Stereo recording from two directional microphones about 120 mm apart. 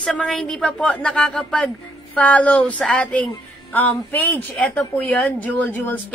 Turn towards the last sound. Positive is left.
turn(degrees=15)  # may be behind; listen again after turning